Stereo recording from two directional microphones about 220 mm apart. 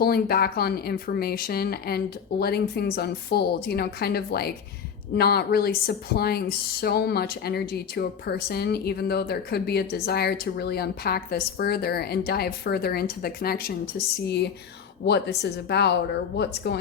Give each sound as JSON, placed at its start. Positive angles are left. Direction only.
{"t": 0.0, "sound": "speech", "side_deg": 45}